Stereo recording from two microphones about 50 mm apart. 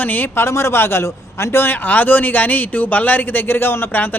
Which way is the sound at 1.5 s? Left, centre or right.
Left.